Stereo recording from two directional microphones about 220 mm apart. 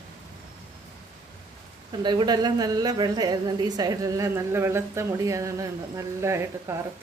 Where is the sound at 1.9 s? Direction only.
20° right (ahead or behind).